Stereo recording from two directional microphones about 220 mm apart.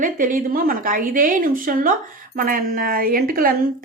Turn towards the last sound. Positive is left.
turn(degrees=-40)  # may be behind; listen again after turning